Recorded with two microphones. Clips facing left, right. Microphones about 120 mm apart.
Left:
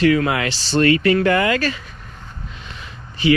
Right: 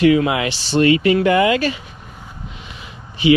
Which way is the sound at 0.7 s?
20° right (ahead or behind).